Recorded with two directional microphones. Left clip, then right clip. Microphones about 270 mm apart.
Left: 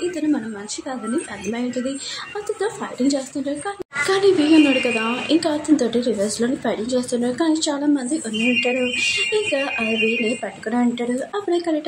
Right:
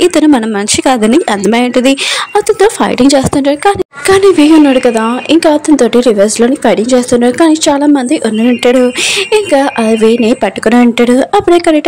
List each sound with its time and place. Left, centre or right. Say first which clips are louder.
0.1 s a woman's voice: right 15 dB; right
2.4 s a woman's voice: right 15 dB; right
9.3 s a woman's voice: right 12 dB; right